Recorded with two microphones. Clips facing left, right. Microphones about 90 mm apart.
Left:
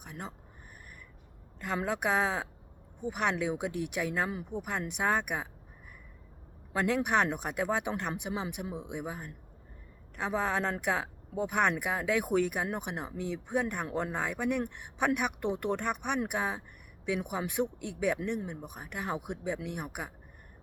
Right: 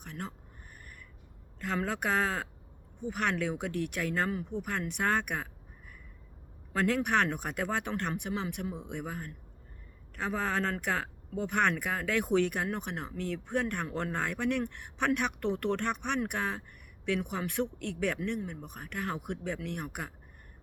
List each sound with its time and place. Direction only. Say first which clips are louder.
0.0 s speech: right 1 dB; 15° left (ahead or behind)
1.6 s speech: left 1 dB; 10° left (ahead or behind)
6.7 s speech: even; 10° left (ahead or behind)
18.2 s speech: even; 20° left (ahead or behind)